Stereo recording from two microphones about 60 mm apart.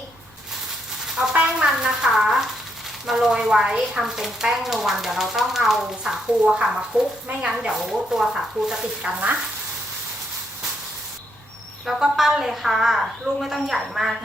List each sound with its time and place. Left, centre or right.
1.2 s a sound: centre
3.1 s speech: centre
9.0 s stir: centre
11.9 s a woman's voice: centre